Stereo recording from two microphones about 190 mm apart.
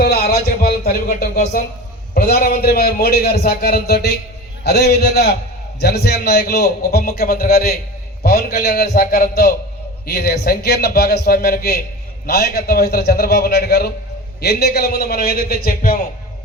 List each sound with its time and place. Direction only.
0.0 s a man's voice: 55° left (ahead or behind)
2.1 s a man's voice: 50° left (ahead or behind)